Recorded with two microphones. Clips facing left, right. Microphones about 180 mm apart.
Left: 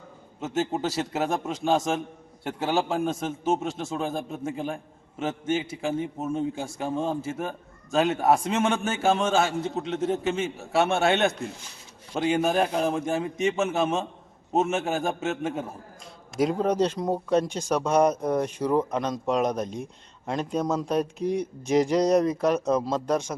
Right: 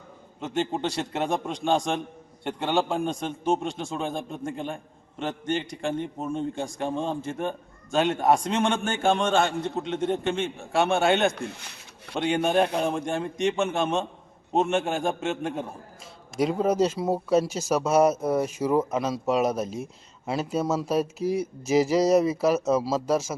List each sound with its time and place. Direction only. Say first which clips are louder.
0.3 s a man's voice: left 1 dB; 5° left (ahead or behind)
11.5 s speech: right 1 dB; 65° right (ahead or behind)
12.2 s a man's voice: even; centre (ahead or behind)